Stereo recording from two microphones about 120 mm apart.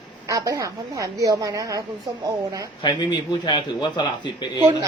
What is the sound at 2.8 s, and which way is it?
A man's voice, 35° left (ahead or behind).